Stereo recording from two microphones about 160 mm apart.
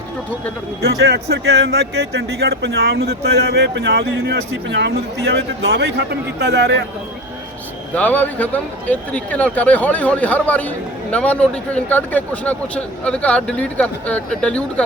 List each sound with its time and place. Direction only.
1.0 s speech: 90° right
7.9 s speech: 10° left (ahead or behind)